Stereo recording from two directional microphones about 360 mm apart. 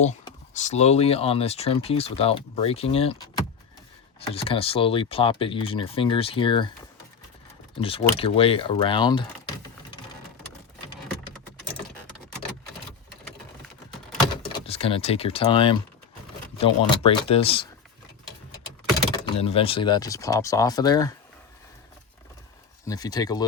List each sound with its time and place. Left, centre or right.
0.0 s speech: centre
4.3 s speech: centre
7.8 s speech: centre
14.7 s speech: centre
19.2 s speech: centre
22.9 s speech: centre